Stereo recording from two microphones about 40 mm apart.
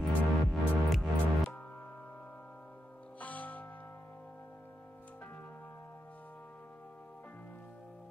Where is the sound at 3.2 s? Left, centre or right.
Left.